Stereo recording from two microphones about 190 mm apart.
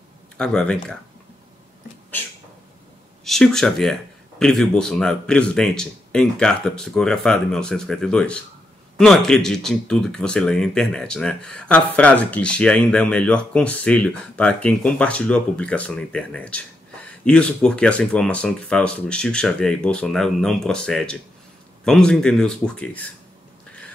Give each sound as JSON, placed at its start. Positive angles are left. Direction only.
{"t": 0.4, "sound": "speech", "side_deg": 5}
{"t": 3.3, "sound": "speech", "side_deg": 0}